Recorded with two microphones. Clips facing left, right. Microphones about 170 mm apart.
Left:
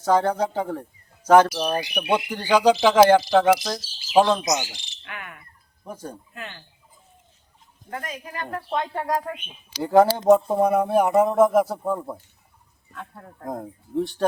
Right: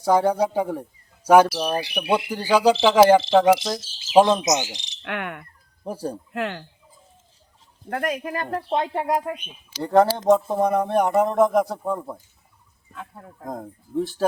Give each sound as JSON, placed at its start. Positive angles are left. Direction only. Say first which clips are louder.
{"t": 0.0, "sound": "speech", "louder": "right 2 dB", "side_deg": -10}
{"t": 3.6, "sound": "bird vocalization", "louder": "right 2 dB", "side_deg": -25}
{"t": 5.0, "sound": "cricket", "louder": "right 10 dB", "side_deg": -70}
{"t": 5.8, "sound": "speech", "louder": "right 7 dB", "side_deg": -35}
{"t": 6.3, "sound": "speech", "louder": "right 11 dB", "side_deg": -85}
{"t": 7.9, "sound": "speech", "louder": "right 8 dB", "side_deg": -60}
{"t": 8.4, "sound": "speech", "louder": "right 2 dB", "side_deg": -35}
{"t": 8.9, "sound": "bird vocalization", "louder": "right 2 dB", "side_deg": -20}
{"t": 9.8, "sound": "speech", "louder": "left 1 dB", "side_deg": 0}